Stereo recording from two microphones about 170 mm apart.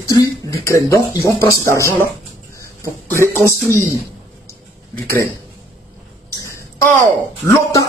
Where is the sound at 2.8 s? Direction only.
15° right (ahead or behind).